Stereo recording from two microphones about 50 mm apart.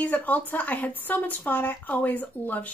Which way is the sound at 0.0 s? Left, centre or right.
Left.